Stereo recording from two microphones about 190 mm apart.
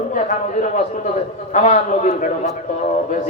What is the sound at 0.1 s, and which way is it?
A man's voice, 40° left (ahead or behind).